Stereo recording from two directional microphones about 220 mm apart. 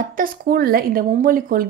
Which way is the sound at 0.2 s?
40° right (ahead or behind).